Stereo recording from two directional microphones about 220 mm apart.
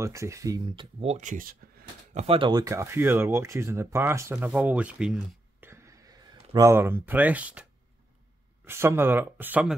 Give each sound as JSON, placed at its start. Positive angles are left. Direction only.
{"t": 0.0, "sound": "speech", "side_deg": -15}
{"t": 2.2, "sound": "speech", "side_deg": -25}
{"t": 8.6, "sound": "speech", "side_deg": -10}